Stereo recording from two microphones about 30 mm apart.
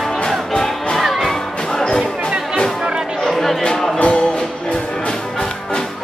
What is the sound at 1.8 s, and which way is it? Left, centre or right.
Music, left.